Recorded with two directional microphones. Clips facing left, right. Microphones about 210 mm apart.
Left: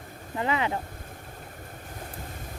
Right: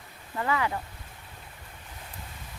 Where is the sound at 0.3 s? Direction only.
20° left (ahead or behind).